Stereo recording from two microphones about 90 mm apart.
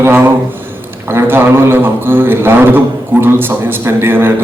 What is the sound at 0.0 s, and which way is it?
A man's voice, 25° right (ahead or behind).